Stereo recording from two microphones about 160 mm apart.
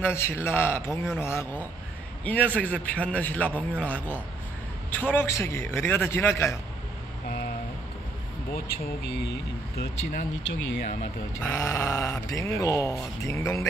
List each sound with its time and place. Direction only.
0.0 s speech: 15° left (ahead or behind)
7.2 s vehicle: 70° left (ahead or behind)
8.5 s speech: 70° left (ahead or behind); by 10.6 s 85° left
11.3 s speech: 15° left (ahead or behind)